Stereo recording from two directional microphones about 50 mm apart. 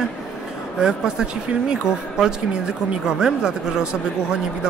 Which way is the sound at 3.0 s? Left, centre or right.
Centre.